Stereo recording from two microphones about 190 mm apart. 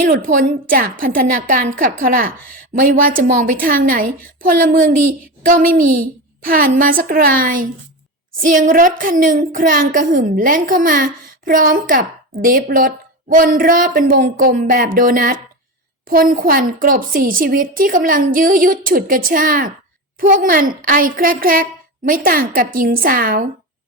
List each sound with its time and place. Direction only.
0.1 s a woman's voice: 45° right (ahead or behind)